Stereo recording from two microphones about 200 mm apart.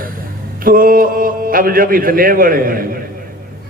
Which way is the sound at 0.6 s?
45° right (ahead or behind).